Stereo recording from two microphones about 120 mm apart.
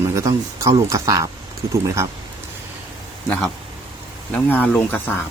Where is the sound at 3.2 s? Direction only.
10° left (ahead or behind).